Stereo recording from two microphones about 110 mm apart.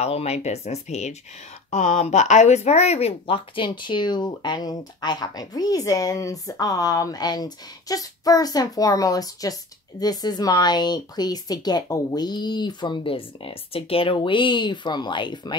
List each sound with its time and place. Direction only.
0.0 s speech: 75° left (ahead or behind); by 15.5 s 45° left (ahead or behind)